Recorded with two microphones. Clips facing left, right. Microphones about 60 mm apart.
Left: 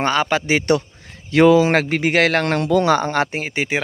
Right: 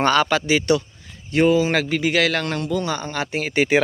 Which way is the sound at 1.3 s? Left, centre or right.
Left.